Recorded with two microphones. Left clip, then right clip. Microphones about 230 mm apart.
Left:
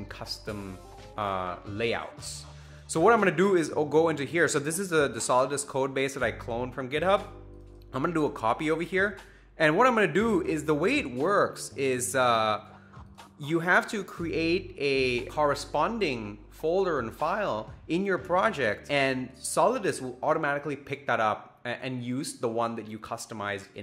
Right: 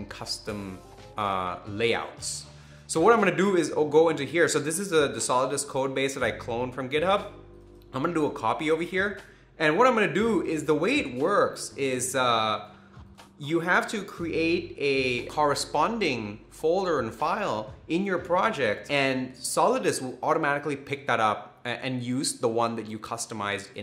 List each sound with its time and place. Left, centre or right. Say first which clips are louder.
0.1 s speech: right 3 dB; left